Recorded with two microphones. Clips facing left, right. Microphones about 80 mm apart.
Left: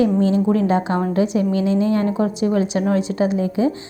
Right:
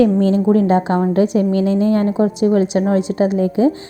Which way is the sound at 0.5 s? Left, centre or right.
Right.